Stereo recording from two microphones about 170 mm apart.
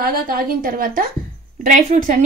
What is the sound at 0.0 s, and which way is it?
A woman's voice, 60° right (ahead or behind).